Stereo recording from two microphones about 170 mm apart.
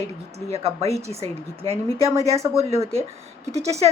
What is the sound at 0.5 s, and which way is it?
A woman's voice, 35° right (ahead or behind).